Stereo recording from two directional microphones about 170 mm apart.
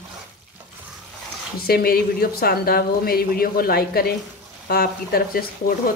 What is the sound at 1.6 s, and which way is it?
Speech, 65° left (ahead or behind).